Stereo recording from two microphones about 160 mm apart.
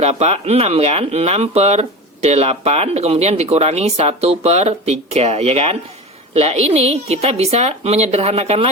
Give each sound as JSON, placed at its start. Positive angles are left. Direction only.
{"t": 0.0, "sound": "speech", "side_deg": -40}